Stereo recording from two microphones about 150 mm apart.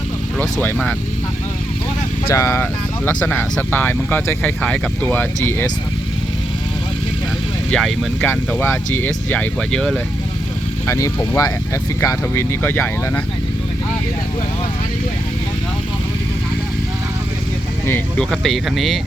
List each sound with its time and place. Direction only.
0.3 s speech: 10° left (ahead or behind)
2.3 s speech: 20° left (ahead or behind)
7.7 s speech: 5° left (ahead or behind)
8.3 s speech: 15° left (ahead or behind)
10.8 s speech: 20° left (ahead or behind)
18.2 s speech: centre (ahead or behind)